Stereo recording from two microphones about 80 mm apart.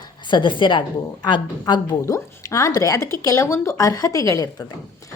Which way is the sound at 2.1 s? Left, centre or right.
Left.